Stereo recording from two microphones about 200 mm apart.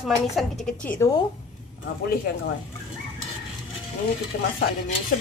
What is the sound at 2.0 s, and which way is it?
Speech, 50° left (ahead or behind).